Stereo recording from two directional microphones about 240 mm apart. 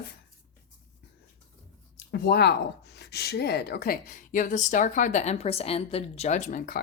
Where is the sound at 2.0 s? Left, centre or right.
Left.